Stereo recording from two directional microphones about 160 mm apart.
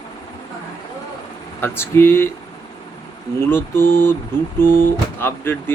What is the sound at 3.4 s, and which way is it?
Speech, 15° left (ahead or behind).